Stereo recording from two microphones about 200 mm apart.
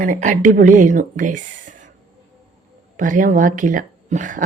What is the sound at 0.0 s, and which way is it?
Speech, 40° right (ahead or behind).